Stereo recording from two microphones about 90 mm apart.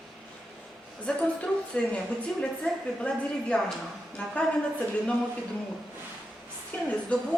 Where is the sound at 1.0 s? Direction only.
10° left (ahead or behind).